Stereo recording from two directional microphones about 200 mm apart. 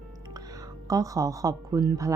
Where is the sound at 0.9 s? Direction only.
15° right (ahead or behind).